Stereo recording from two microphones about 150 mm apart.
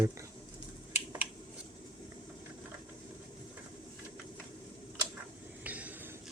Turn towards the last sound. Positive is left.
turn(degrees=-10)  # may be behind; listen again after turning